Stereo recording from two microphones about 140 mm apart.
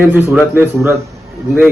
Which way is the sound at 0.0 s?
15° right (ahead or behind).